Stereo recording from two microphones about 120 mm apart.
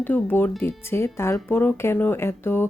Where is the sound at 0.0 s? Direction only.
15° left (ahead or behind).